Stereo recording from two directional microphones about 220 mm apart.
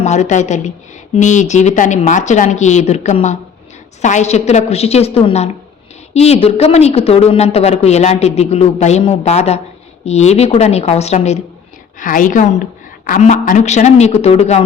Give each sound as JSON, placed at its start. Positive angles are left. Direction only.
{"t": 0.0, "sound": "a woman's voice", "side_deg": 30}